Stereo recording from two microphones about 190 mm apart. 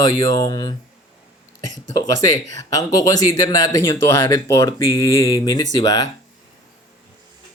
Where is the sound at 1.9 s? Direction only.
20° left (ahead or behind).